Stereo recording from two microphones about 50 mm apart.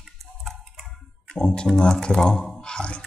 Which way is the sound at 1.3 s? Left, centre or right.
Centre.